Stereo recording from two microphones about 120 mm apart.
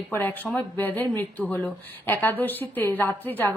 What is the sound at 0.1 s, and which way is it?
Speech, 15° left (ahead or behind).